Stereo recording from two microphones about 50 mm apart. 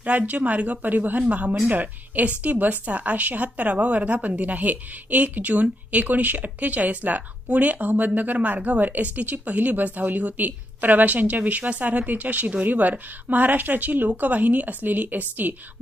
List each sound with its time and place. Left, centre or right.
0.0 s speech: right